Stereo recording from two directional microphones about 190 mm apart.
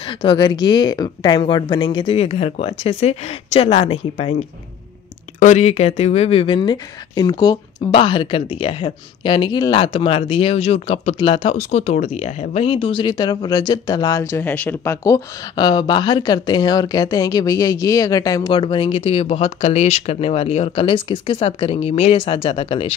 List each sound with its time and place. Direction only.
0.0 s speech: 25° left (ahead or behind)